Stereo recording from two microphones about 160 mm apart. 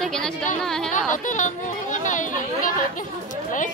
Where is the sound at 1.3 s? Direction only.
50° left (ahead or behind).